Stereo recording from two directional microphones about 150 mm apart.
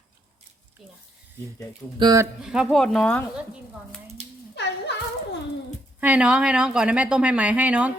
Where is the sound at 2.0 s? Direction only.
25° right (ahead or behind).